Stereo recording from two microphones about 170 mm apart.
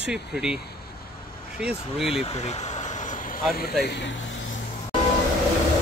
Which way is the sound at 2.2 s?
40° left (ahead or behind).